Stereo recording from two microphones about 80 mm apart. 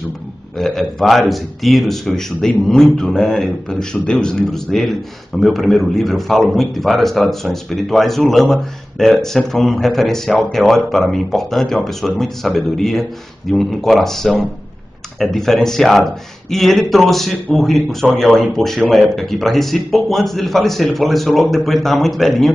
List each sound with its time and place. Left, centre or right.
0.6 s a man's voice: centre